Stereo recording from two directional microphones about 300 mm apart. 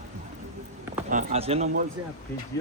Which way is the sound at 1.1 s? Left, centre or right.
Right.